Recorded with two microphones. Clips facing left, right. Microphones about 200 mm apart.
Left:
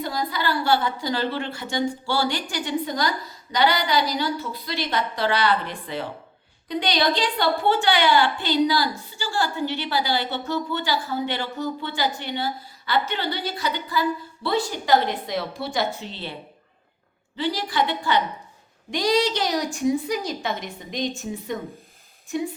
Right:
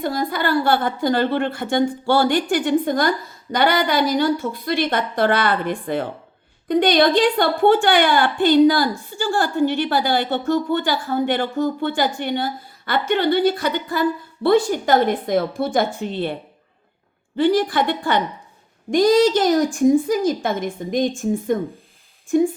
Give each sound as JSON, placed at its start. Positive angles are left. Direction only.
{"t": 0.0, "sound": "a woman's voice", "side_deg": -50}